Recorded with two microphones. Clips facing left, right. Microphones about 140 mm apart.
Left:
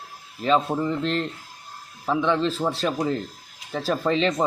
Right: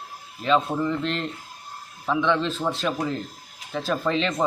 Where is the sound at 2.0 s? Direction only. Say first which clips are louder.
Left 1 dB; 35° left (ahead or behind).